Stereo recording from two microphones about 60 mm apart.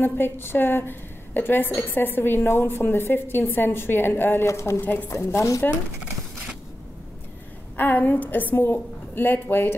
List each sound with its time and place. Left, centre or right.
0.0 s a woman's voice: left
4.5 s a woman's voice: left
4.7 s a woman's voice: left
5.1 s speech: left
7.7 s a woman's voice: left